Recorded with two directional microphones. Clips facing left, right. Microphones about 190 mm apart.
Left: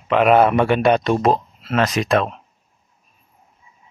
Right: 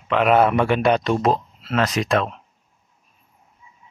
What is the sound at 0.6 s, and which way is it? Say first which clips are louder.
Speech: left 2 dB; 55° left (ahead or behind).